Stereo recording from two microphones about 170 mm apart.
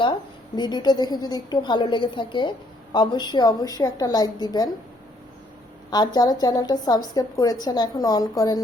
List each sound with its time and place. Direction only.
0.5 s a woman's voice: 25° left (ahead or behind)
5.9 s a woman's voice: 25° left (ahead or behind)